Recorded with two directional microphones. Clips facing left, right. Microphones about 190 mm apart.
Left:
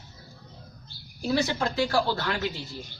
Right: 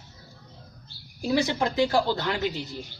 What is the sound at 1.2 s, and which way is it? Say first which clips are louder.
A woman's voice: right 2 dB; 15° right (ahead or behind).